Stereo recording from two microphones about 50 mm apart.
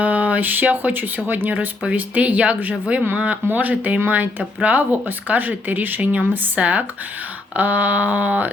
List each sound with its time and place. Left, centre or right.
0.0 s speech: right